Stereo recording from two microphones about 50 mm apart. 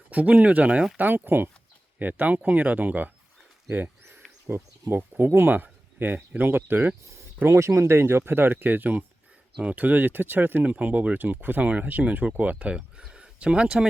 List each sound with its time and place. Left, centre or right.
0.1 s speech: right
0.9 s speech: right
3.7 s bird: right
4.4 s insect: right
4.9 s speech: right
6.0 s speech: right
7.4 s speech: right
10.6 s speech: right